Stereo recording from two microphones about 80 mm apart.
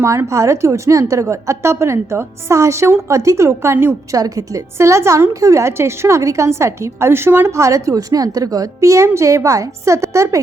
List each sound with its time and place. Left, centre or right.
0.0 s a woman's voice: right
4.1 s a woman's voice: right